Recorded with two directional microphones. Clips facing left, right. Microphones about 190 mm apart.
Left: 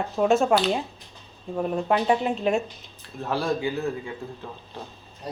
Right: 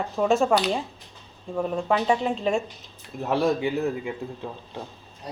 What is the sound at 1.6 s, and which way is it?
A woman's voice, 5° left (ahead or behind).